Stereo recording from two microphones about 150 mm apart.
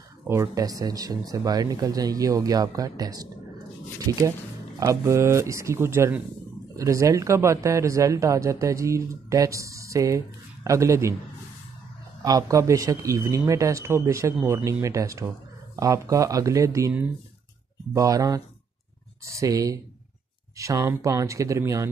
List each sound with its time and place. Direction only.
0.3 s speech: 20° right (ahead or behind)
12.2 s speech: 25° right (ahead or behind)
17.9 s speech: 20° right (ahead or behind)